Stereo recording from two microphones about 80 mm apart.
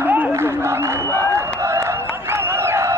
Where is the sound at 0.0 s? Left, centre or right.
Right.